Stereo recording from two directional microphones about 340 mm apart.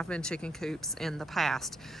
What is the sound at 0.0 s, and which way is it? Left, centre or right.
Speech, centre.